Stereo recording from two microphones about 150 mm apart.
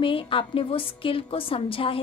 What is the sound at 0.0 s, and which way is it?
A woman's voice, 35° left (ahead or behind).